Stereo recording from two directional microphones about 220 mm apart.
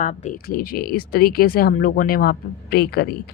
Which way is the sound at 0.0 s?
35° left (ahead or behind).